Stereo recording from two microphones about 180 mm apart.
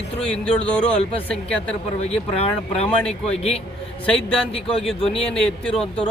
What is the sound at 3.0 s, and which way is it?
Speech, 5° left (ahead or behind).